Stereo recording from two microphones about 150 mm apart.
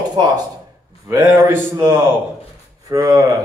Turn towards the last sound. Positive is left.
turn(degrees=-20)  # may be behind; listen again after turning